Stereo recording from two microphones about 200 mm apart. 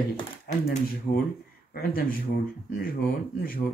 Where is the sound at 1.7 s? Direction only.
45° left (ahead or behind).